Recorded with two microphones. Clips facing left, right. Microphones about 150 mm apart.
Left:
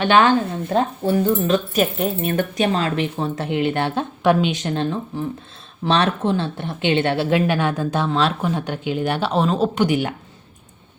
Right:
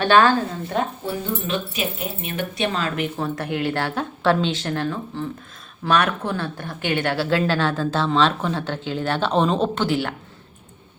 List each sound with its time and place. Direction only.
0.0 s a woman's voice: 20° left (ahead or behind)
1.0 s speech: 45° left (ahead or behind)
2.7 s a woman's voice: 30° left (ahead or behind); by 9.8 s 5° left (ahead or behind)
9.8 s speech: 15° left (ahead or behind)